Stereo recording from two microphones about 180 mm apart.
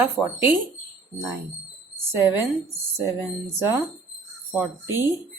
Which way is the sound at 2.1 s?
15° right (ahead or behind).